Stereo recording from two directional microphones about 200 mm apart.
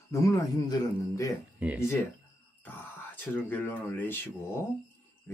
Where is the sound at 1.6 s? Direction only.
5° right (ahead or behind).